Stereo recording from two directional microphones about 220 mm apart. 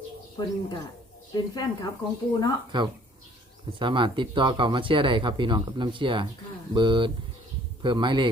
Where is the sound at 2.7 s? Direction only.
20° right (ahead or behind).